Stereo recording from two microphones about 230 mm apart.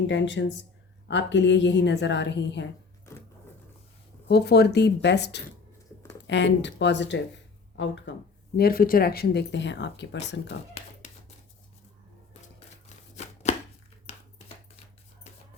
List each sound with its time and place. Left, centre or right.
0.1 s speech: left
4.3 s speech: left
8.5 s speech: left
10.4 s a sound: left
13.1 s chopping: left
14.1 s a sound: left